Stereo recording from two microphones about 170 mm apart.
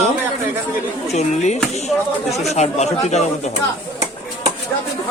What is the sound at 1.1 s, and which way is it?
Speech, 40° left (ahead or behind).